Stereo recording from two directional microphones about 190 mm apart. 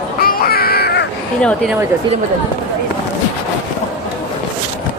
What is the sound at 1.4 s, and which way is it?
Speech, 5° left (ahead or behind).